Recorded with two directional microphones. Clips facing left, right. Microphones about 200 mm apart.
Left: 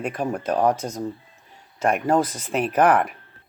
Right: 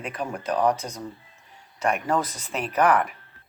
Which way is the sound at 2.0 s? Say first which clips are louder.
Left 5 dB; 50° left (ahead or behind).